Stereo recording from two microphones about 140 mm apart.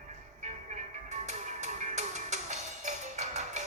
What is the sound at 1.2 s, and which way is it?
Music, 55° right (ahead or behind).